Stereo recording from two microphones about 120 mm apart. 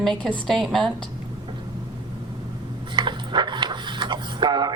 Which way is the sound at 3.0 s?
40° right (ahead or behind).